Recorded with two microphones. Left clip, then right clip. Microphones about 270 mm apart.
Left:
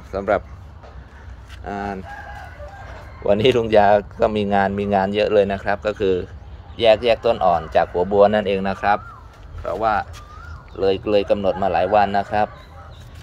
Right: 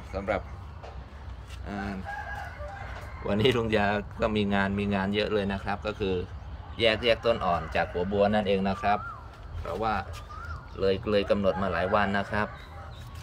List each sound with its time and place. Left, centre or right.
0.1 s speech: centre
1.7 s speech: centre
3.3 s speech: centre